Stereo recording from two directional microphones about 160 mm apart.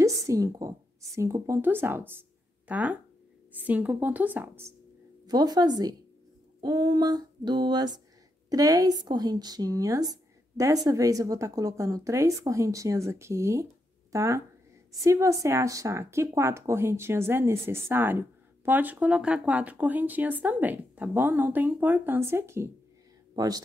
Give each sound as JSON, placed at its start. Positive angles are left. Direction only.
{"t": 0.0, "sound": "a woman's voice", "side_deg": -20}
{"t": 5.2, "sound": "speech", "side_deg": -25}